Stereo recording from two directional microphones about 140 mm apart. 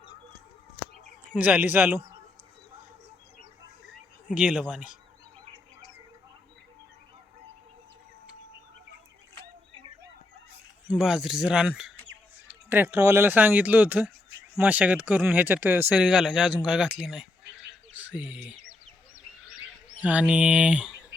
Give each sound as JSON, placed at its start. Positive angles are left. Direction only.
{"t": 1.3, "sound": "speech", "side_deg": -10}
{"t": 4.4, "sound": "speech", "side_deg": -5}
{"t": 10.9, "sound": "speech", "side_deg": -5}
{"t": 18.5, "sound": "chicken", "side_deg": -45}
{"t": 20.0, "sound": "speech", "side_deg": -10}